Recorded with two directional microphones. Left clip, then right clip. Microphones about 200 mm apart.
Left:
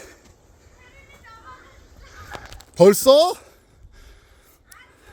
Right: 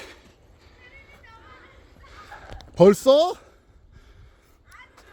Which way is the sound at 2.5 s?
Centre (ahead or behind).